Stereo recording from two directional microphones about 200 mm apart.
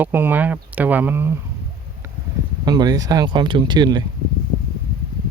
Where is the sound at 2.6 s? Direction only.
20° right (ahead or behind).